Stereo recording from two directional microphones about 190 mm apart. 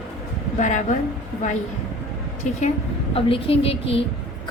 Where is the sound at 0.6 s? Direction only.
40° left (ahead or behind).